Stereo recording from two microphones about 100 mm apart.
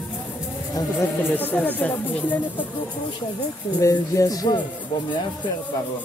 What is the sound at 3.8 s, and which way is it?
Music, 35° left (ahead or behind).